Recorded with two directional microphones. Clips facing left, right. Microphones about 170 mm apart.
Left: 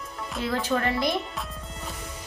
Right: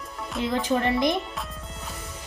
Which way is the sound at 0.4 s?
15° right (ahead or behind).